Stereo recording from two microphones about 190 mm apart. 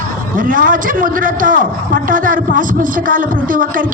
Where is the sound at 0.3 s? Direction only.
45° right (ahead or behind).